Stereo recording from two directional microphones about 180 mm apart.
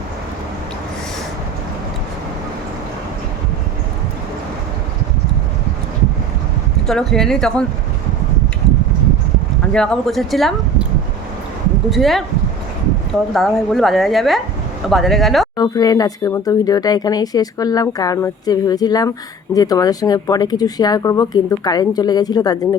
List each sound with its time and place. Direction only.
6.8 s a woman's voice: centre (ahead or behind)
9.7 s a woman's voice: 5° left (ahead or behind)
11.9 s a woman's voice: centre (ahead or behind)
13.3 s a woman's voice: centre (ahead or behind)
15.5 s speech: 20° left (ahead or behind)